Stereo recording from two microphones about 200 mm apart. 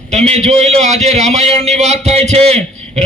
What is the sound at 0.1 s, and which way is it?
A man's voice, 35° right (ahead or behind).